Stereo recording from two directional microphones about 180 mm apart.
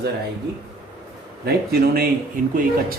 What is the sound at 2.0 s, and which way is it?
Speech, 50° right (ahead or behind).